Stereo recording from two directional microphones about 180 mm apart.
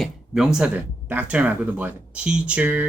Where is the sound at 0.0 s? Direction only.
5° right (ahead or behind).